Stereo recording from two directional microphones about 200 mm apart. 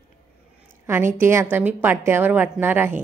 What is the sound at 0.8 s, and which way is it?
A woman's voice, 10° right (ahead or behind).